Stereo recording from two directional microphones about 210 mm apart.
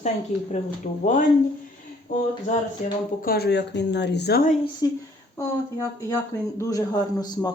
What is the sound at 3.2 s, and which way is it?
A woman's voice, 45° left (ahead or behind).